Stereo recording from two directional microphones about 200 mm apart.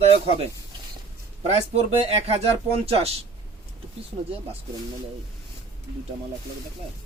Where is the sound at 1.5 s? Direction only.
30° right (ahead or behind).